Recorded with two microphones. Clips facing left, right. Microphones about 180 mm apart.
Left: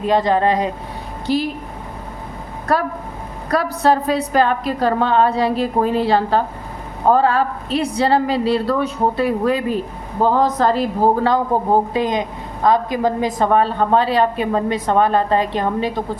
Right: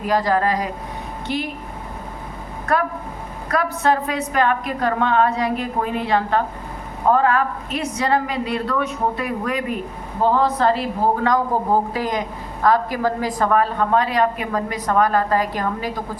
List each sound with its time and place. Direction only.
0.0 s a woman's voice: 25° left (ahead or behind)
1.3 s a woman's voice: 35° left (ahead or behind)
2.7 s a woman's voice: 35° left (ahead or behind)
10.4 s a woman's voice: 40° left (ahead or behind)
11.7 s a woman's voice: 20° left (ahead or behind)